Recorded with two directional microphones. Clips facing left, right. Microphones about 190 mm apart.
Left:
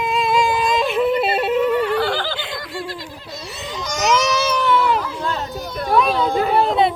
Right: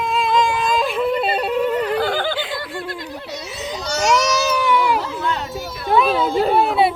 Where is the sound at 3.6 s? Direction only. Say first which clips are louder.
Right 1 dB; centre (ahead or behind).